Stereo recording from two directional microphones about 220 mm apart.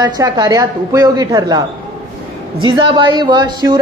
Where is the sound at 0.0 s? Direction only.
15° right (ahead or behind).